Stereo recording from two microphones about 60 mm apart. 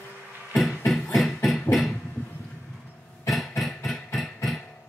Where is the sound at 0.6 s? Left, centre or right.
Centre.